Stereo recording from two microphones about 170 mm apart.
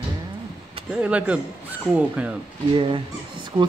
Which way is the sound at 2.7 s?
30° right (ahead or behind).